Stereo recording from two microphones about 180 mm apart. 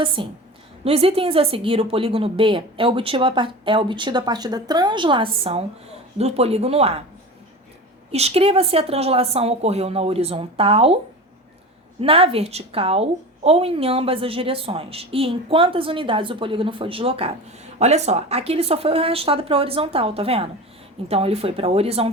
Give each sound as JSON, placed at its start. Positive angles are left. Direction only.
{"t": 0.0, "sound": "a woman's voice", "side_deg": -30}
{"t": 8.1, "sound": "a woman's voice", "side_deg": -35}
{"t": 11.9, "sound": "a woman's voice", "side_deg": -30}